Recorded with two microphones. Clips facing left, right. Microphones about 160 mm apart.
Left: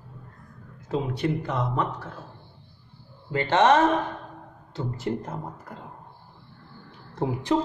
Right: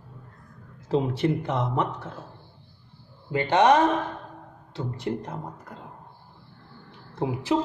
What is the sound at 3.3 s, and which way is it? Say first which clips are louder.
Speech: even; 15° right (ahead or behind).